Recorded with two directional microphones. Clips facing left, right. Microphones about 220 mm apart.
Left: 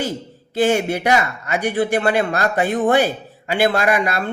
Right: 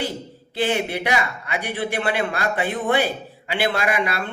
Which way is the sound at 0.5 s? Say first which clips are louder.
Left 5 dB; 45° left (ahead or behind).